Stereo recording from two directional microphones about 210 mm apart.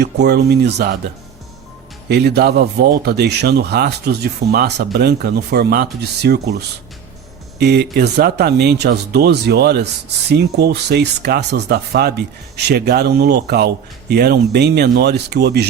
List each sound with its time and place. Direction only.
0.0 s speech: 50° right (ahead or behind)
2.0 s speech: 50° right (ahead or behind)